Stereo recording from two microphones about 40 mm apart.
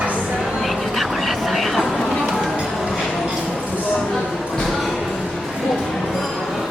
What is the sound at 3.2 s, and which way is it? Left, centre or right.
Clip-clop, centre.